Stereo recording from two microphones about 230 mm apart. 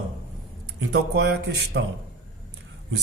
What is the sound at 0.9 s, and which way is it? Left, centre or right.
Speech, right.